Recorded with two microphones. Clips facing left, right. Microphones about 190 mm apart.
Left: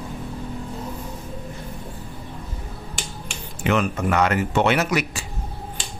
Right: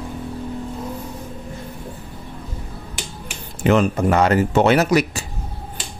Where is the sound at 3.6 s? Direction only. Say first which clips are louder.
Right 5 dB; 35° right (ahead or behind).